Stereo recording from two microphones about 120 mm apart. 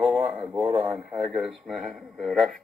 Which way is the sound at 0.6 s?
40° right (ahead or behind).